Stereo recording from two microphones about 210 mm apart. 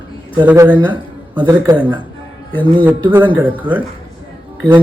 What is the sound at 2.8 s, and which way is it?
Speech, 5° right (ahead or behind).